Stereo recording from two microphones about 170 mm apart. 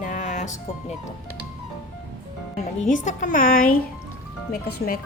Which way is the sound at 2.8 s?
45° left (ahead or behind).